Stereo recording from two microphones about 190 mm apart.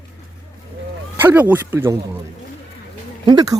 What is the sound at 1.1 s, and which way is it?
Speech, 10° right (ahead or behind).